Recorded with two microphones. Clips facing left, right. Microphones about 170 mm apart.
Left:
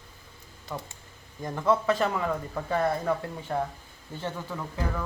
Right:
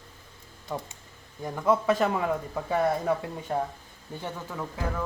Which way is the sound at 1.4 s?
10° right (ahead or behind).